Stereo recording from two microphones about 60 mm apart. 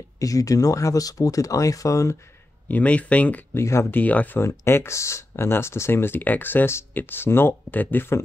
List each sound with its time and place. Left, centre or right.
0.2 s speech: left
2.7 s speech: left
3.5 s speech: left
3.9 s speech: left
4.4 s speech: left